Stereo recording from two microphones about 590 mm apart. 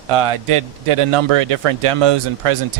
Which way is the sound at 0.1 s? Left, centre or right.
Right.